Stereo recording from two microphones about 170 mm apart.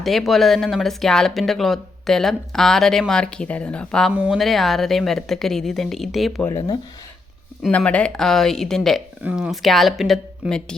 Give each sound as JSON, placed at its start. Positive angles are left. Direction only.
{"t": 0.0, "sound": "speech", "side_deg": 0}
{"t": 4.1, "sound": "speech", "side_deg": -5}
{"t": 6.5, "sound": "speech", "side_deg": 25}
{"t": 7.6, "sound": "speech", "side_deg": 5}